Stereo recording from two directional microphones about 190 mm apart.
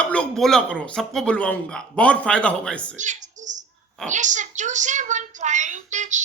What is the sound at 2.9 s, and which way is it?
A woman's voice, 40° right (ahead or behind).